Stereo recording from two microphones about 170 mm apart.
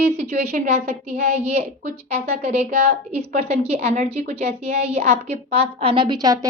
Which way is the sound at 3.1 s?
35° right (ahead or behind).